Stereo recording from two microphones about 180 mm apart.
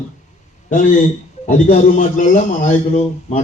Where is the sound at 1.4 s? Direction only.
40° left (ahead or behind).